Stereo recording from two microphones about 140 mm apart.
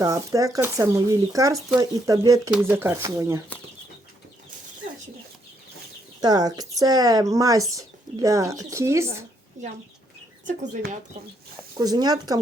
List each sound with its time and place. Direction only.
0.0 s speech: 25° right (ahead or behind)
6.1 s speech: 30° right (ahead or behind)
10.4 s speech: 60° right (ahead or behind)
11.8 s speech: 30° right (ahead or behind)